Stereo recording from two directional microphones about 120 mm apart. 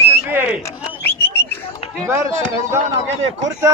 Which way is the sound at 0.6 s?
20° left (ahead or behind).